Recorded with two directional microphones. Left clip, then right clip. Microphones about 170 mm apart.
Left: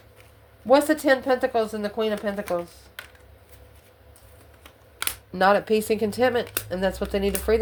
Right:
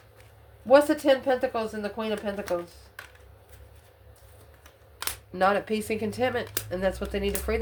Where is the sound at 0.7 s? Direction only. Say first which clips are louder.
Left 1 dB; 40° left (ahead or behind).